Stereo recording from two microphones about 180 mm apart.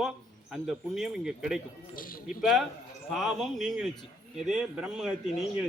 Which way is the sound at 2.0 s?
50° left (ahead or behind).